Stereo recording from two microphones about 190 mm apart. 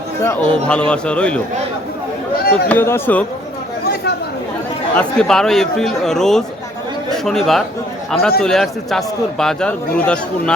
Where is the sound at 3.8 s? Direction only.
55° left (ahead or behind).